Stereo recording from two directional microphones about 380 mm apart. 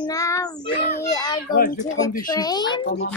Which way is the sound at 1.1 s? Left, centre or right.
Centre.